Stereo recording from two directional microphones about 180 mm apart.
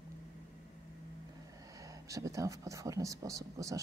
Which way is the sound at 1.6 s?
20° right (ahead or behind).